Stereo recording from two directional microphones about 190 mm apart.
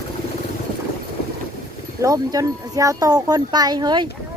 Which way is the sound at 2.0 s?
20° right (ahead or behind).